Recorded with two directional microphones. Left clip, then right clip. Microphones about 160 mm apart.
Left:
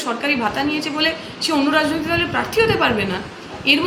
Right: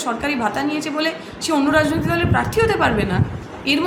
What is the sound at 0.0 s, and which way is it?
A woman's voice, 15° right (ahead or behind).